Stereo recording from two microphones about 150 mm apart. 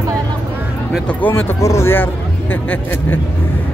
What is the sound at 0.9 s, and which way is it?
Speech, 10° left (ahead or behind).